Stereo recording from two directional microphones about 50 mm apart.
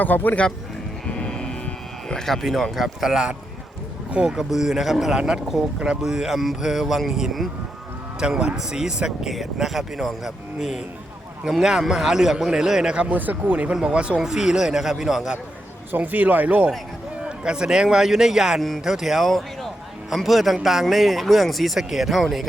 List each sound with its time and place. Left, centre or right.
0.0 s speech: left
1.0 s music: left
2.0 s speech: centre
4.3 s speech: centre
5.1 s speech: centre
8.2 s speech: centre
13.1 s speech: right
14.2 s speech: centre
15.9 s speech: right
17.2 s a man's voice: centre